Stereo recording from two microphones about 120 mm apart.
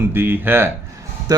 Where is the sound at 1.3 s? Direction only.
30° right (ahead or behind).